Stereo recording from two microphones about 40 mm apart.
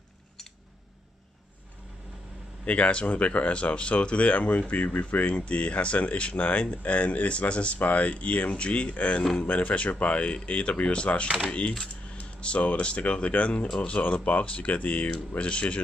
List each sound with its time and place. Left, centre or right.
2.6 s speech: left
15.3 s speech: left